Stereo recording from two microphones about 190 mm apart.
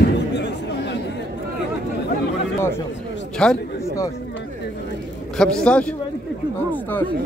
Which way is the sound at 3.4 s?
5° left (ahead or behind).